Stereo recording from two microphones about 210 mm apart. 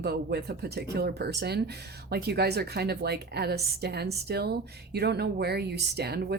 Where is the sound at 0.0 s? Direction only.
50° right (ahead or behind).